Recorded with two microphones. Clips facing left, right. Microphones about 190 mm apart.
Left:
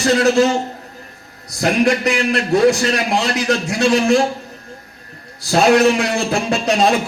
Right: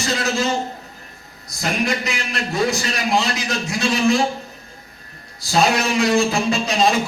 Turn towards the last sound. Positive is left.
turn(degrees=65)  # may be behind; listen again after turning